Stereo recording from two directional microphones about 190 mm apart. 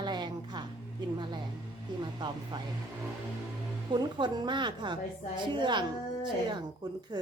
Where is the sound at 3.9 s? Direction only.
25° right (ahead or behind).